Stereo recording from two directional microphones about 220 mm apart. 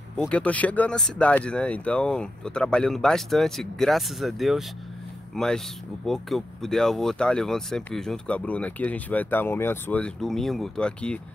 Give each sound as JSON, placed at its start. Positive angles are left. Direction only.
{"t": 0.2, "sound": "speech", "side_deg": 5}